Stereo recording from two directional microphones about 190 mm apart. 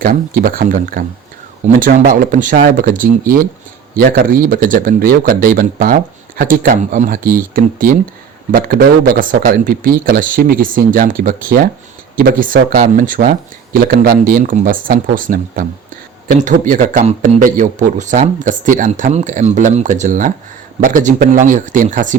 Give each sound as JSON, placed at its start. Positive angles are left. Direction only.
{"t": 0.0, "sound": "speech", "side_deg": -50}